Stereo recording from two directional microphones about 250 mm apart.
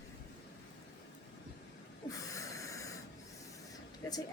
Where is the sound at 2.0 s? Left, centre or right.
Centre.